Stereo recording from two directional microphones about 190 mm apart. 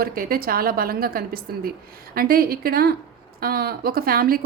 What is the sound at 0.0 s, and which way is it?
A woman's voice, 50° right (ahead or behind).